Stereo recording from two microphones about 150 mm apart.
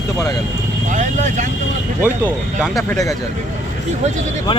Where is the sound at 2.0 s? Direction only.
15° right (ahead or behind).